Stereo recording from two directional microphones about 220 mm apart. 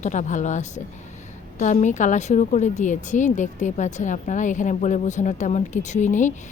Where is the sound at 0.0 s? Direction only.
35° left (ahead or behind).